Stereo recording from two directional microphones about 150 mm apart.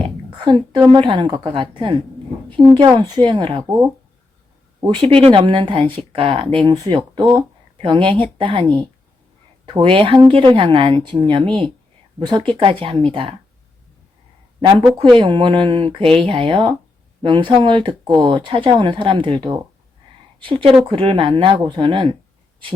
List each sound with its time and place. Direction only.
0.0 s a woman's voice: 35° right (ahead or behind)
4.8 s speech: 30° right (ahead or behind)
9.6 s speech: 35° right (ahead or behind)
14.6 s speech: 30° right (ahead or behind)
20.4 s speech: 35° right (ahead or behind)